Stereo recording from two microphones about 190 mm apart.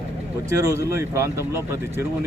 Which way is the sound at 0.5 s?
15° right (ahead or behind).